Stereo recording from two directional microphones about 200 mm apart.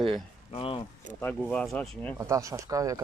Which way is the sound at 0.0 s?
Centre (ahead or behind).